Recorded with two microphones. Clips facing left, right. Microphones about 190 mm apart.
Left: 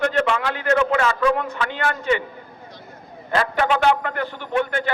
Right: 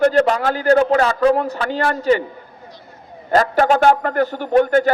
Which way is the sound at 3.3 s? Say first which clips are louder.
Right 6 dB; 40° right (ahead or behind).